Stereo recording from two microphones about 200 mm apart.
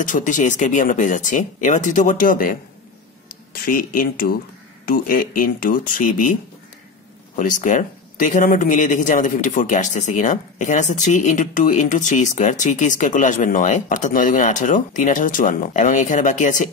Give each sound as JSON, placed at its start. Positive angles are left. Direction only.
{"t": 0.0, "sound": "speech", "side_deg": 40}
{"t": 7.3, "sound": "speech", "side_deg": 40}